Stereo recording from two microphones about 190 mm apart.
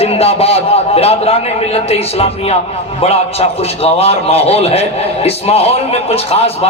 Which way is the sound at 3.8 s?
30° left (ahead or behind).